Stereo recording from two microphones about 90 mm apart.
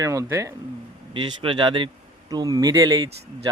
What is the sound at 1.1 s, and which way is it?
Speech, 65° right (ahead or behind).